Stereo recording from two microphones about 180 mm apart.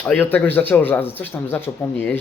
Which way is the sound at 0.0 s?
10° left (ahead or behind).